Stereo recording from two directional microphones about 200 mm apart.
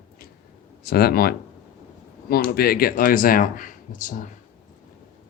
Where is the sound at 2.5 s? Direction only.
50° left (ahead or behind).